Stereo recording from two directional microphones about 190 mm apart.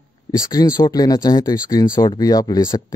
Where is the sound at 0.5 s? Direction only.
20° left (ahead or behind).